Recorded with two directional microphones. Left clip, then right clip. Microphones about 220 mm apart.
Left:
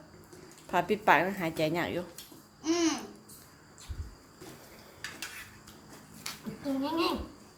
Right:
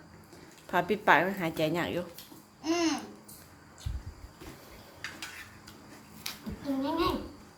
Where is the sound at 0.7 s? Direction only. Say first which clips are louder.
Right 1 dB; 5° right (ahead or behind).